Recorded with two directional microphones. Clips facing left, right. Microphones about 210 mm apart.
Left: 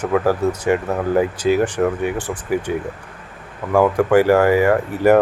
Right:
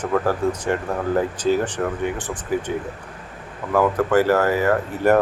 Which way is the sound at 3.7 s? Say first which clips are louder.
Left 4 dB; 10° left (ahead or behind).